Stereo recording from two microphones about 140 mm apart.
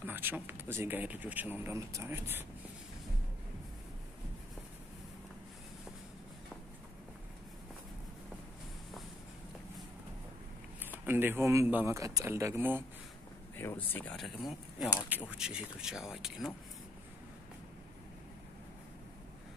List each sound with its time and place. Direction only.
0.0 s speech: 15° right (ahead or behind)
10.8 s speech: 15° right (ahead or behind)
13.6 s speech: 15° left (ahead or behind)
14.8 s speech: 5° right (ahead or behind)